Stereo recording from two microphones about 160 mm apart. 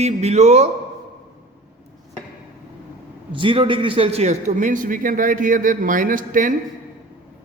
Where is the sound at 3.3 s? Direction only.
30° right (ahead or behind); by 6.5 s 55° right (ahead or behind).